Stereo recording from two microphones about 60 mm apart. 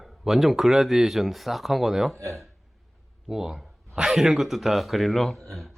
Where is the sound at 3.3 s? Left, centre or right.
Centre.